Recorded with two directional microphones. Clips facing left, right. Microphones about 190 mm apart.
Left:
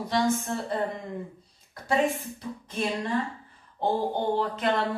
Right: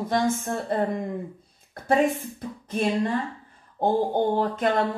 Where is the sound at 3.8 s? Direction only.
45° right (ahead or behind).